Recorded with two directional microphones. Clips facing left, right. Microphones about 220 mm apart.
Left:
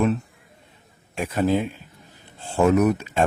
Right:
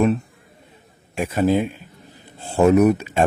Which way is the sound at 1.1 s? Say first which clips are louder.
Right 3 dB; 10° right (ahead or behind).